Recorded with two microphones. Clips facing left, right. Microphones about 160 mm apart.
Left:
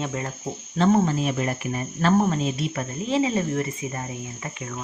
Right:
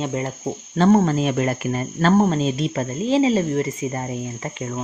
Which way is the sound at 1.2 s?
70° right (ahead or behind).